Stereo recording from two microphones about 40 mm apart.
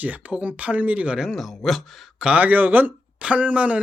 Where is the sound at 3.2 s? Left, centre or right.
Right.